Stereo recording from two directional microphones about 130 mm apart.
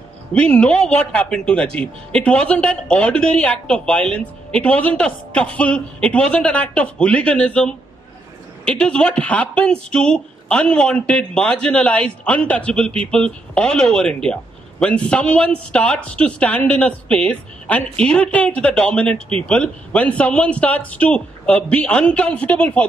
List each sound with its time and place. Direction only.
0.3 s speech: 10° left (ahead or behind)
19.1 s speech: 50° right (ahead or behind)
19.4 s speech: 10° left (ahead or behind)